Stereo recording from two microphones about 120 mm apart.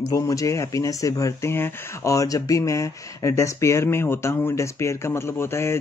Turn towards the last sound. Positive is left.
turn(degrees=20)  # may be behind; listen again after turning